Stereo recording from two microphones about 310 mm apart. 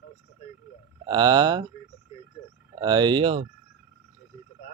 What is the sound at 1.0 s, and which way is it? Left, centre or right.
Speech, centre.